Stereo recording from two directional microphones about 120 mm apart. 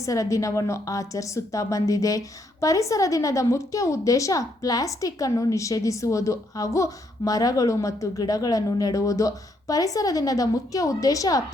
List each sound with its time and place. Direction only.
0.0 s a woman's voice: 25° left (ahead or behind)